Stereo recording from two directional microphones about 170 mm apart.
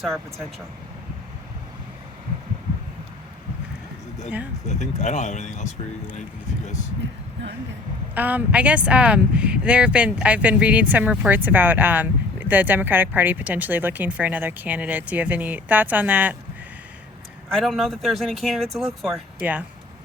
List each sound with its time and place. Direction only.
4.6 s speech: 45° left (ahead or behind)
8.1 s speech: 10° right (ahead or behind)
17.5 s speech: centre (ahead or behind)